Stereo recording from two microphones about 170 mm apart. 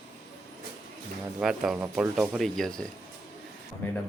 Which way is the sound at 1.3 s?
5° right (ahead or behind).